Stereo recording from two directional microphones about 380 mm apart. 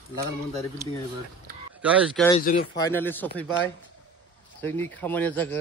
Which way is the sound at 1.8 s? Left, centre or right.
Centre.